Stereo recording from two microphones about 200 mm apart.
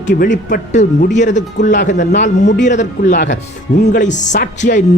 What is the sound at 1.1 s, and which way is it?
Speech, 60° left (ahead or behind).